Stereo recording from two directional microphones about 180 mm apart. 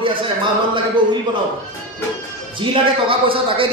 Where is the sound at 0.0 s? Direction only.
30° right (ahead or behind).